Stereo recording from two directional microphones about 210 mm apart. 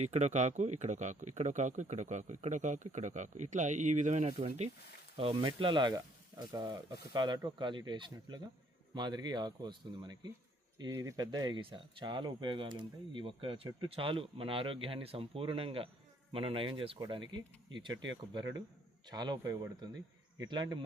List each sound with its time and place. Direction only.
0.0 s speech: 35° right (ahead or behind)
19.0 s speech: 20° right (ahead or behind)